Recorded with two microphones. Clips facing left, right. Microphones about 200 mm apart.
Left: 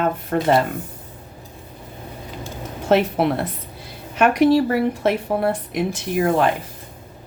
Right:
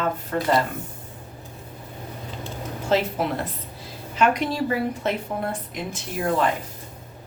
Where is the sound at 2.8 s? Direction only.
60° left (ahead or behind).